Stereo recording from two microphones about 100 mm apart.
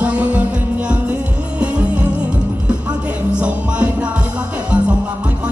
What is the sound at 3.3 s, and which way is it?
Music, 10° right (ahead or behind).